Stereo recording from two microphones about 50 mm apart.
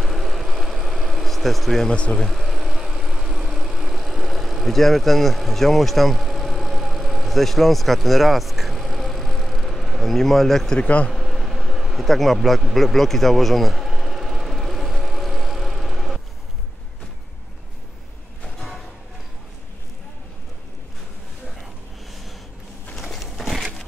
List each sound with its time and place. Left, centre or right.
0.0 s vehicle: centre
1.9 s a man's voice: left
2.1 s vehicle: centre
10.8 s a man's voice: left
11.1 s a sound: centre
22.9 s a sound: centre